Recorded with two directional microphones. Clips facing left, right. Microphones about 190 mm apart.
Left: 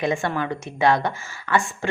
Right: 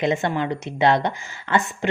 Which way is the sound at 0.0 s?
20° right (ahead or behind).